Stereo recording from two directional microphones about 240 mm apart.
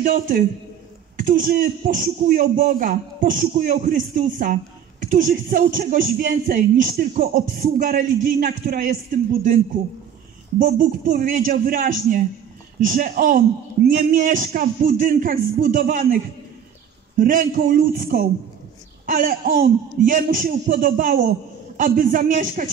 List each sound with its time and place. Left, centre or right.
0.0 s a woman's voice: right
10.6 s speech: right
17.2 s speech: right